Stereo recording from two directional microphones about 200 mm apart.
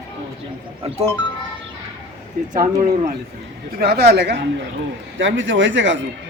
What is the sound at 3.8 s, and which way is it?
A man's voice, 50° right (ahead or behind).